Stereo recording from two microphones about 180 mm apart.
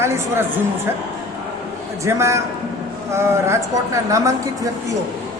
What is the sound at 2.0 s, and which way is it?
A man's voice, 15° right (ahead or behind).